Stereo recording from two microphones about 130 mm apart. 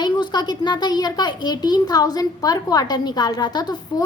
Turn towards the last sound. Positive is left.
turn(degrees=30)  # may be behind; listen again after turning